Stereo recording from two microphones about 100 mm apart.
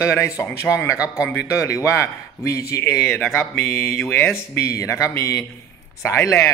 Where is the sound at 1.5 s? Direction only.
30° left (ahead or behind).